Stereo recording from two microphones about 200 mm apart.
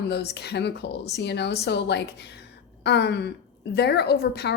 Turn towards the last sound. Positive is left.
turn(degrees=55)  # may be behind; listen again after turning